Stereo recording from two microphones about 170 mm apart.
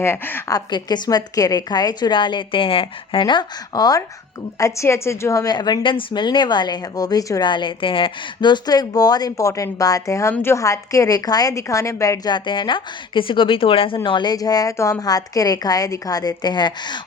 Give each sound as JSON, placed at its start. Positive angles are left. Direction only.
{"t": 0.0, "sound": "a woman's voice", "side_deg": 15}